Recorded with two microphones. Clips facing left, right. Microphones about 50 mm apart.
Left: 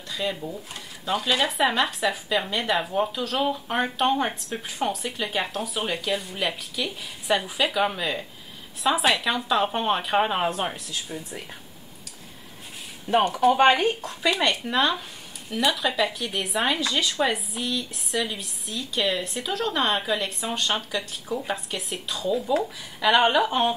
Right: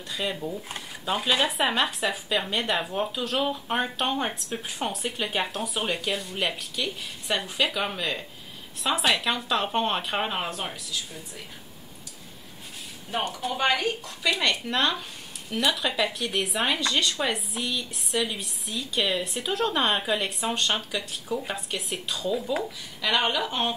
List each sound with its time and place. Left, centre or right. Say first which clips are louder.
0.1 s speech: left 1 dB; centre
1.1 s speech: left 1 dB; centre
10.5 s speech: left 5 dB; left
13.1 s speech: left 10 dB; left
13.7 s speech: left 4 dB; left
14.4 s speech: left 2 dB; centre
22.9 s speech: left 6 dB; centre